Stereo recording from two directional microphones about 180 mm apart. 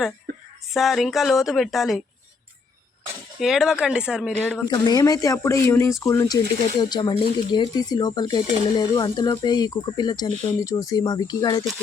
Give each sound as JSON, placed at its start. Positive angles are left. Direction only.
{"t": 0.7, "sound": "speech", "side_deg": 0}
{"t": 3.4, "sound": "speech", "side_deg": -5}
{"t": 4.6, "sound": "speech", "side_deg": 25}